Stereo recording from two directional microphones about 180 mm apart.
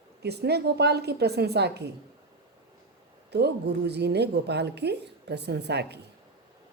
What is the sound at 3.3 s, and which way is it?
A woman's voice, 65° right (ahead or behind).